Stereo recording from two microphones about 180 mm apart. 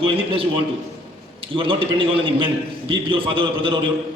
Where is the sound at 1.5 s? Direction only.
30° right (ahead or behind).